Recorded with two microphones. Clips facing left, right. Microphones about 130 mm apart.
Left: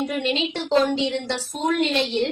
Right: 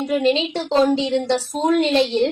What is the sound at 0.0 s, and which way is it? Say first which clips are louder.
A woman's voice: right 5 dB; 35° right (ahead or behind).